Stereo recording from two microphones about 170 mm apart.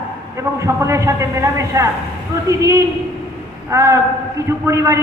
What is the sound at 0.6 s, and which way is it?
A man's voice, 15° right (ahead or behind).